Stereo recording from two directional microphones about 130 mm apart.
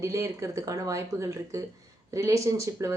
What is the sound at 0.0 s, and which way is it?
Speech, 25° right (ahead or behind).